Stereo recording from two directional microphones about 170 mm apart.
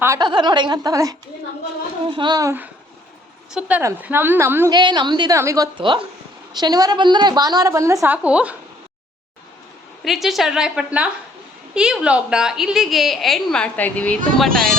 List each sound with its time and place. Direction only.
0.0 s a woman's voice: 20° right (ahead or behind)
4.7 s a woman's voice: 25° right (ahead or behind)
5.7 s a woman's voice: 30° right (ahead or behind); by 8.5 s 5° right (ahead or behind)
10.0 s a woman's voice: centre (ahead or behind)